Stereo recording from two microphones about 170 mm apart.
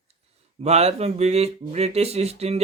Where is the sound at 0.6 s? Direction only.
40° right (ahead or behind).